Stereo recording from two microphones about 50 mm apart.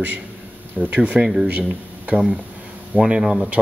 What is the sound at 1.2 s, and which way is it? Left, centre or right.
Speech, centre.